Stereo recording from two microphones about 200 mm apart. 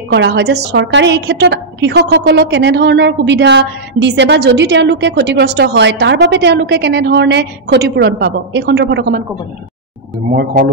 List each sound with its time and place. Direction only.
0.1 s a woman's voice: 60° right (ahead or behind)